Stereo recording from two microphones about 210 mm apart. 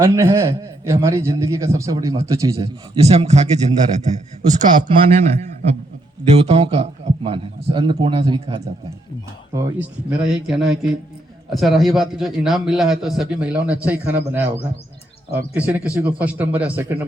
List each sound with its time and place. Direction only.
0.0 s a man's voice: 10° right (ahead or behind)
3.0 s a man's voice: 30° right (ahead or behind)
4.8 s a man's voice: 25° right (ahead or behind)
9.6 s a man's voice: 5° right (ahead or behind)